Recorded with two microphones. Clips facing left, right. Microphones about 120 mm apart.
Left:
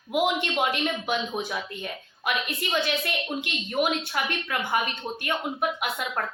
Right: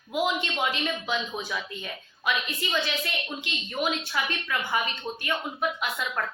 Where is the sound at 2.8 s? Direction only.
55° left (ahead or behind).